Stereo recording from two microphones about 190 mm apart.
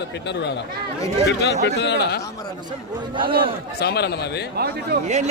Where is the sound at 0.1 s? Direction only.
65° left (ahead or behind).